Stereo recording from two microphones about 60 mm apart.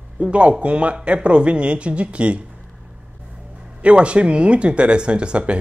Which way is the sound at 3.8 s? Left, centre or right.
Centre.